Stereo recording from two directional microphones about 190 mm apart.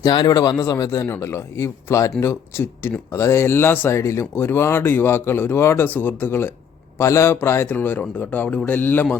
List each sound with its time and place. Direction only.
0.0 s speech: 20° left (ahead or behind)